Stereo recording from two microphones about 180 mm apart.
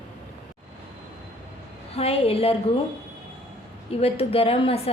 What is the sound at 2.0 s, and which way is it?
Speech, 35° left (ahead or behind).